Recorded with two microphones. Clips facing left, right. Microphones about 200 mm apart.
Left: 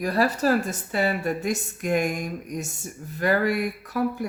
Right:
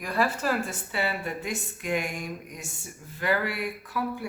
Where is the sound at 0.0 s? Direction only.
40° left (ahead or behind).